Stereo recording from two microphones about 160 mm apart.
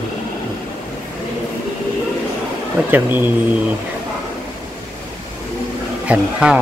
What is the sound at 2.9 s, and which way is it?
Speech, 10° right (ahead or behind).